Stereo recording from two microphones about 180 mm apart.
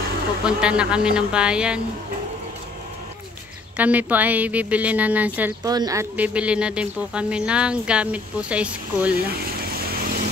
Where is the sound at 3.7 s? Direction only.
10° right (ahead or behind).